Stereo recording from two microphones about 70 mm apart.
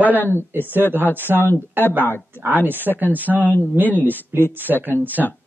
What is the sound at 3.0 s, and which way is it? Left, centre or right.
Speech, left.